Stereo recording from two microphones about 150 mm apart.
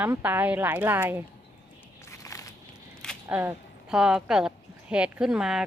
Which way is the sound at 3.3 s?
15° right (ahead or behind).